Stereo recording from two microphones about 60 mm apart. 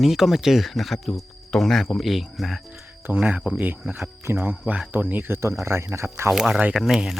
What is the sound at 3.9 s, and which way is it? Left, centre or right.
Speech, right.